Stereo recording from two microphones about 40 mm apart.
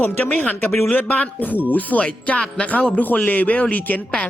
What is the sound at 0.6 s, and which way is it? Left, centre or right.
Speech, left.